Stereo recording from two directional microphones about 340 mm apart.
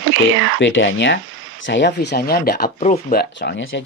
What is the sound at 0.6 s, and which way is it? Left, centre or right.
Speech, left.